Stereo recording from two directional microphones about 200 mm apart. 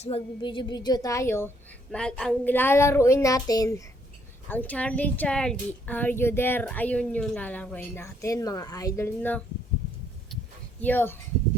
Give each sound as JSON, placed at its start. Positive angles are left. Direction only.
{"t": 0.0, "sound": "a woman's voice", "side_deg": 25}
{"t": 10.8, "sound": "speech", "side_deg": 10}